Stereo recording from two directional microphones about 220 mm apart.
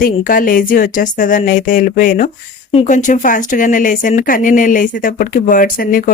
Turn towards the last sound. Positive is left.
turn(degrees=40)  # may be behind; listen again after turning